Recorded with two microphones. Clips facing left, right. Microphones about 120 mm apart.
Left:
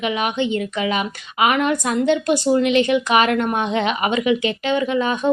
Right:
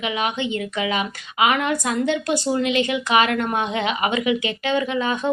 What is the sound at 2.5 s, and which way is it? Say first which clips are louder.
Speech: left 5 dB; 20° right (ahead or behind).